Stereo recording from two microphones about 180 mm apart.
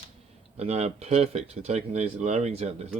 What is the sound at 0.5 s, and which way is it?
Speech, 35° right (ahead or behind).